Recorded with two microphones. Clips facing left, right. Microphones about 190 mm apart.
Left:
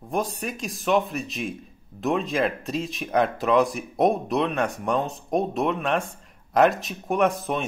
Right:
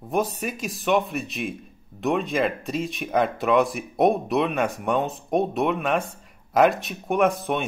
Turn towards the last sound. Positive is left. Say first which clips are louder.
# right 1 dB
turn(degrees=0)  # may be behind; listen again after turning